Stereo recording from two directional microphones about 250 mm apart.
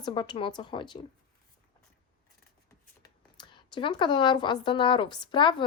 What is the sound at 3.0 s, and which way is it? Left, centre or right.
A woman's voice, centre.